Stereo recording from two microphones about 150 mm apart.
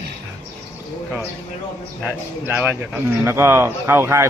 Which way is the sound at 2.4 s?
15° right (ahead or behind).